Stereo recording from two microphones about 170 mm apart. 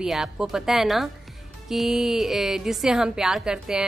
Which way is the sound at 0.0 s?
Centre (ahead or behind).